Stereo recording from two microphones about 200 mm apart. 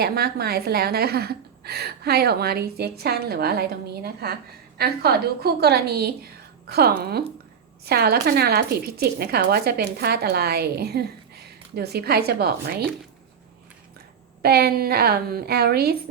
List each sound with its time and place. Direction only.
0.0 s speech: 50° right (ahead or behind)
14.4 s speech: 50° right (ahead or behind)